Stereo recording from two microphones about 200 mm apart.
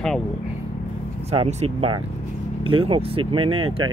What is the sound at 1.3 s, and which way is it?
Speech, 30° right (ahead or behind).